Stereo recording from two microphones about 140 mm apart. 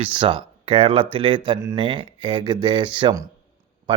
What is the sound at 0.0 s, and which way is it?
A man's voice, 40° right (ahead or behind).